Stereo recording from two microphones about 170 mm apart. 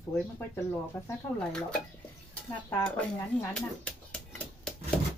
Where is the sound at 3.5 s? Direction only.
5° left (ahead or behind).